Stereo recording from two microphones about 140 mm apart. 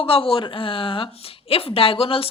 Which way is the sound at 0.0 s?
40° left (ahead or behind).